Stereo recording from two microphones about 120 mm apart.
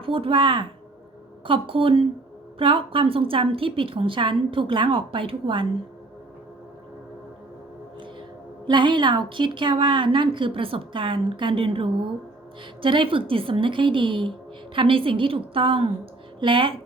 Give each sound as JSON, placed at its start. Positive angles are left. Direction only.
{"t": 0.0, "sound": "a woman's voice", "side_deg": -50}
{"t": 8.6, "sound": "a woman's voice", "side_deg": -40}